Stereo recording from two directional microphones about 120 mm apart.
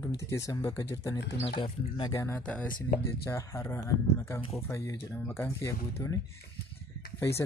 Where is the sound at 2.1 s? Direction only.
20° left (ahead or behind).